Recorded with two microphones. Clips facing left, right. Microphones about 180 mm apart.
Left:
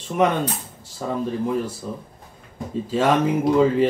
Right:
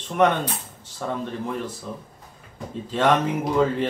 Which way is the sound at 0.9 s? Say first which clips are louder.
Left 3 dB; 10° left (ahead or behind).